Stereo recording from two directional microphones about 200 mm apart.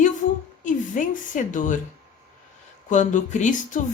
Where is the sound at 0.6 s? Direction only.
40° left (ahead or behind).